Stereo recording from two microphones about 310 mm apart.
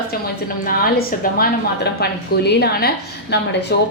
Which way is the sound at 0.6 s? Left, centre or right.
Left.